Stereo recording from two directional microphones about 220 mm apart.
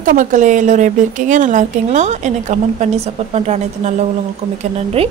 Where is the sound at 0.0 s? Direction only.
35° right (ahead or behind).